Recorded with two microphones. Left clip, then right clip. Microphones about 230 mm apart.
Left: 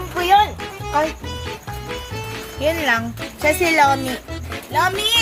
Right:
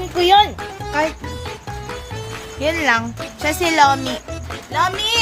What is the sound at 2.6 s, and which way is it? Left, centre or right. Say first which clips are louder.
Music: right 1 dB; centre.